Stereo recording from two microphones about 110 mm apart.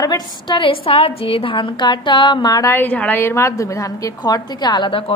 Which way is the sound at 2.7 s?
15° left (ahead or behind).